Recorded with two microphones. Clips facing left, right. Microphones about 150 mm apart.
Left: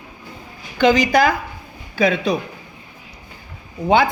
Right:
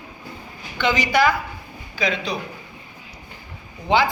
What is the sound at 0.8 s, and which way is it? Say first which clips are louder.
Speech: left 5 dB; 40° left (ahead or behind).